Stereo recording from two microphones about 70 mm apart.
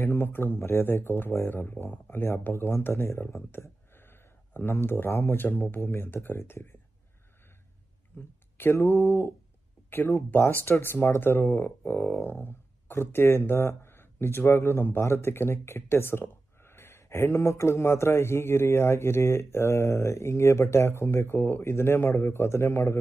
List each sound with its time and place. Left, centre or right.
0.0 s speech: left
8.1 s speech: left